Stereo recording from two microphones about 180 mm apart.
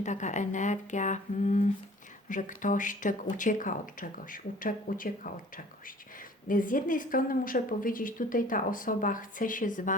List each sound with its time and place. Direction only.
0.0 s a woman's voice: 40° left (ahead or behind)